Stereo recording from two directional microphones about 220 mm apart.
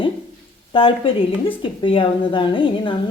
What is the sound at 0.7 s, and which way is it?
Speech, 25° left (ahead or behind).